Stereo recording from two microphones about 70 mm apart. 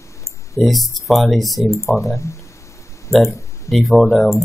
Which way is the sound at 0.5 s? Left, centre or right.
Centre.